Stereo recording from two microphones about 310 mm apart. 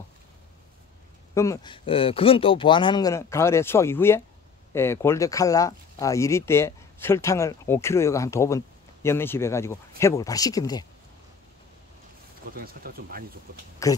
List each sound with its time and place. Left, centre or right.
1.3 s speech: centre
12.4 s speech: right
13.8 s speech: centre